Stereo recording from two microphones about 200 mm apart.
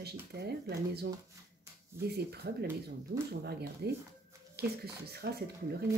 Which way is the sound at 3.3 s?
55° right (ahead or behind).